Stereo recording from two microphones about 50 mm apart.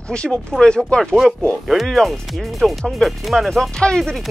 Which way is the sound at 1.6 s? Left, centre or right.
Centre.